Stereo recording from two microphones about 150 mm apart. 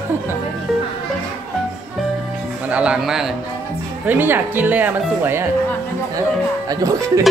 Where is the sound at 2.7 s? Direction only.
10° right (ahead or behind).